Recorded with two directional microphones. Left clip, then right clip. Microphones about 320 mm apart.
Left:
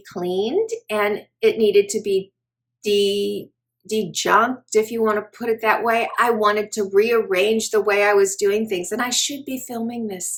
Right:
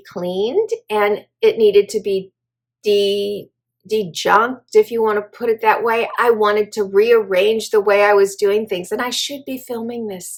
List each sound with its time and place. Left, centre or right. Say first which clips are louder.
0.1 s speech: right 2 dB; centre